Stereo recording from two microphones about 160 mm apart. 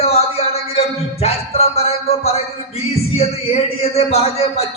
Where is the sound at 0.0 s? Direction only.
40° left (ahead or behind).